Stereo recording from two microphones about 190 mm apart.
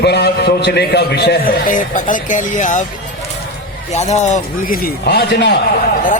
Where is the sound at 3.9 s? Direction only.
35° left (ahead or behind); by 5.5 s 60° left (ahead or behind).